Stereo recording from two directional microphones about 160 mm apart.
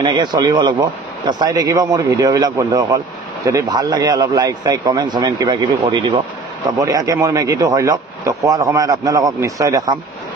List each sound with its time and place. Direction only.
0.0 s a man's voice: 25° right (ahead or behind)